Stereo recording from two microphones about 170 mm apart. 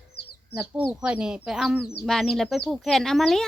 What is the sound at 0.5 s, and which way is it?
Speech, 5° right (ahead or behind).